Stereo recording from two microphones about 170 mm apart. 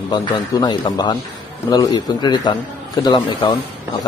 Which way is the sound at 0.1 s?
25° left (ahead or behind).